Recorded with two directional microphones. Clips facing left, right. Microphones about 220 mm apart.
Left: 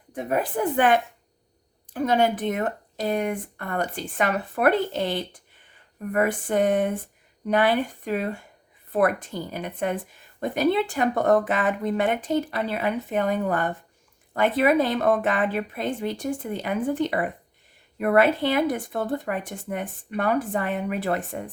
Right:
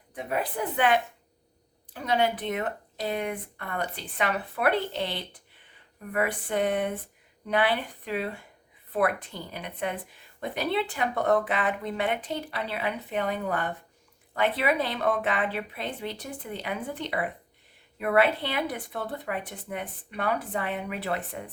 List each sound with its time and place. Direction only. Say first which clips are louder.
0.1 s a woman's voice: left 5 dB; 45° left (ahead or behind)